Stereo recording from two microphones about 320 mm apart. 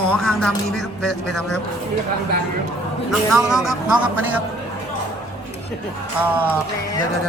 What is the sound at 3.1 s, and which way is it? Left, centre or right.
A man's voice, centre.